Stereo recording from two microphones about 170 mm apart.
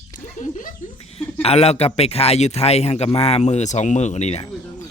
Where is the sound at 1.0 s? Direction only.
35° left (ahead or behind).